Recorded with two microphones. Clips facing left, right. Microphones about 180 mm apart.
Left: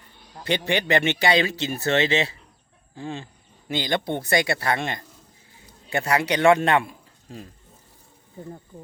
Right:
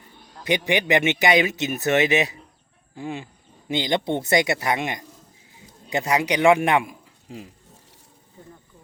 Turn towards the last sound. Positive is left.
turn(degrees=-15)  # may be behind; listen again after turning